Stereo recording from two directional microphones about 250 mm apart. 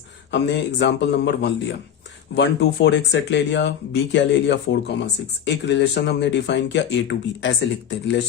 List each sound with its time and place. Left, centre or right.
0.3 s speech: left